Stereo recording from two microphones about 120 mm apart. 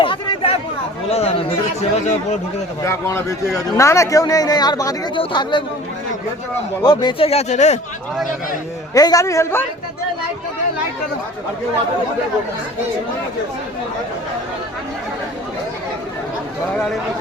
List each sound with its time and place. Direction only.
0.0 s chatter: 50° left (ahead or behind)
1.0 s speech: 60° left (ahead or behind); by 2.4 s 75° left (ahead or behind)
2.8 s a man's voice: 20° left (ahead or behind); by 5.6 s 40° left (ahead or behind)
6.8 s speech: 35° left (ahead or behind)
7.3 s speech: 70° left (ahead or behind)
9.0 s a man's voice: 30° left (ahead or behind)